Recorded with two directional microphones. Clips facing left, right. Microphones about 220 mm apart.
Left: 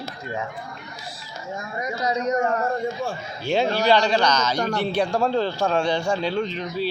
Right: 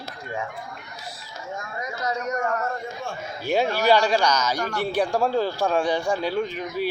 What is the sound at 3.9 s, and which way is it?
A man's voice, 10° right (ahead or behind).